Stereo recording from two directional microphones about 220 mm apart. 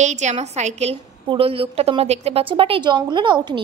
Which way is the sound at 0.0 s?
30° right (ahead or behind).